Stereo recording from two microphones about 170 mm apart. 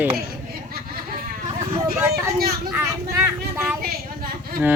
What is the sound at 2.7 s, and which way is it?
Speech, 10° right (ahead or behind).